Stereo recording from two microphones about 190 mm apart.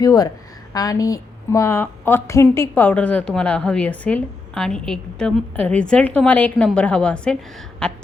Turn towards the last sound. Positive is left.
turn(degrees=5)  # may be behind; listen again after turning